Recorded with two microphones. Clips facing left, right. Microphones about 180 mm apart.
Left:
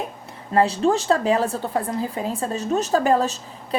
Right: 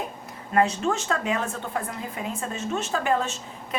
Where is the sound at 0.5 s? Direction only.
35° left (ahead or behind).